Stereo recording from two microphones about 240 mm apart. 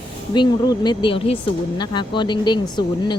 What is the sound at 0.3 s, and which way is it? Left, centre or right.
Speech, centre.